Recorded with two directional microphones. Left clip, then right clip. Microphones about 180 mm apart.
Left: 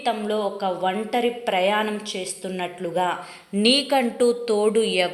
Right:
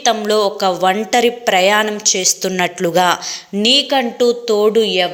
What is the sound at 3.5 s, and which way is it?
A woman's voice, 15° right (ahead or behind).